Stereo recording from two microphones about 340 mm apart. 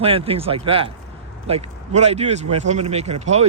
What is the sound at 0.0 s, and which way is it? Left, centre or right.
Speech, centre.